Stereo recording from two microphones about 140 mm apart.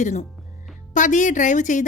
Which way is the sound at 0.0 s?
55° left (ahead or behind).